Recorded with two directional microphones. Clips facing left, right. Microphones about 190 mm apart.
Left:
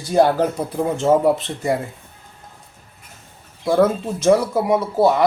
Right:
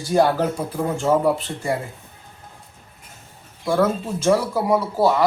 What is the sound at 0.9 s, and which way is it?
Speech, 20° left (ahead or behind).